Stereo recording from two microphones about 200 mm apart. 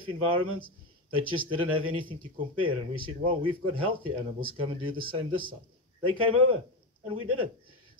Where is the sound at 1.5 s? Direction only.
25° right (ahead or behind).